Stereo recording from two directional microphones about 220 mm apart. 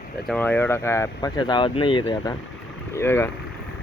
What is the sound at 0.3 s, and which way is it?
Speech, 5° left (ahead or behind).